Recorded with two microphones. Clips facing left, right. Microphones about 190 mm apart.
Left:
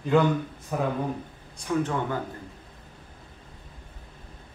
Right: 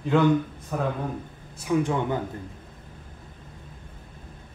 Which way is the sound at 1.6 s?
5° right (ahead or behind).